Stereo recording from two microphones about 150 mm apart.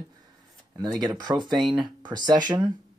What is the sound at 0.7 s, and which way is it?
Speech, 25° right (ahead or behind).